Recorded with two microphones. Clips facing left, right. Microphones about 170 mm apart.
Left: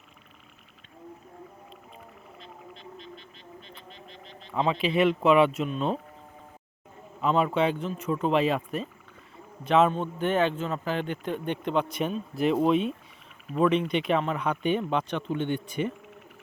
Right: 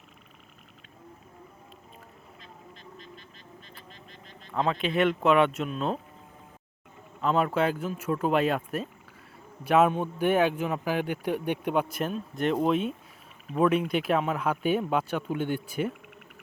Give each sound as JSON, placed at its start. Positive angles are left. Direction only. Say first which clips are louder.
{"t": 2.7, "sound": "vehicle", "louder": "left 3 dB", "side_deg": -45}
{"t": 4.5, "sound": "speech", "louder": "left 1 dB", "side_deg": 0}
{"t": 7.2, "sound": "speech", "louder": "left 1 dB", "side_deg": 0}